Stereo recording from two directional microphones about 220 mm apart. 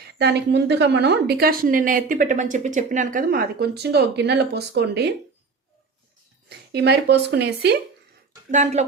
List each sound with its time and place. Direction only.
0.1 s a woman's voice: 50° right (ahead or behind)
6.5 s a woman's voice: 50° right (ahead or behind)
8.4 s speech: 35° right (ahead or behind)